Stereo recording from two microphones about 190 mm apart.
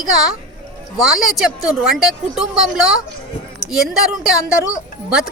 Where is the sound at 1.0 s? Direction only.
Centre (ahead or behind).